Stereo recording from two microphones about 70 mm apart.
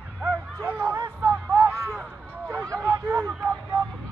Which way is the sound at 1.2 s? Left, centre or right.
Right.